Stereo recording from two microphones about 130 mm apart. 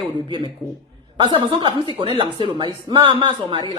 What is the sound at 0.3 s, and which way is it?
Speech, 35° right (ahead or behind).